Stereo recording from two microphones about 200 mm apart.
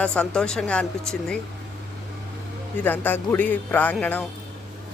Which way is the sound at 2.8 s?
10° left (ahead or behind).